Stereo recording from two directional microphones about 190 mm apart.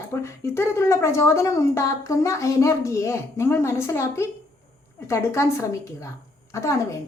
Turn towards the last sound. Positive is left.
turn(degrees=15)  # may be behind; listen again after turning